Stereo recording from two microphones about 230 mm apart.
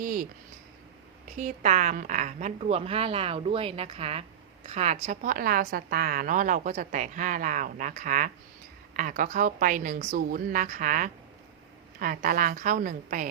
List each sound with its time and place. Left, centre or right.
0.0 s speech: right
1.4 s a woman's voice: right